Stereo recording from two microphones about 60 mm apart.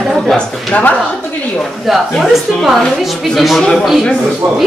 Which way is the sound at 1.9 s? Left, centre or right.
Centre.